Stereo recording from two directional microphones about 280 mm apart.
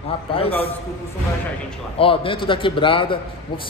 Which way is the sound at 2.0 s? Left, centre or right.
Centre.